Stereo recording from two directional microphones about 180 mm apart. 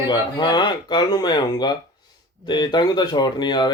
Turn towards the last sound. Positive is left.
turn(degrees=25)  # may be behind; listen again after turning